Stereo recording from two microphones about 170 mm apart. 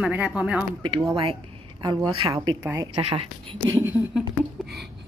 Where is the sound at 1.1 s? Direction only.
35° right (ahead or behind).